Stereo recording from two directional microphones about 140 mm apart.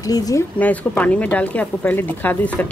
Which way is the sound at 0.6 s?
10° left (ahead or behind).